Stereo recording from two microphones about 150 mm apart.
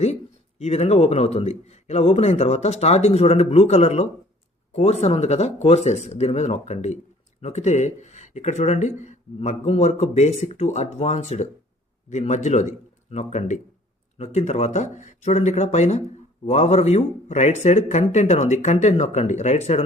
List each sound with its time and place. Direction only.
0.6 s speech: 45° left (ahead or behind)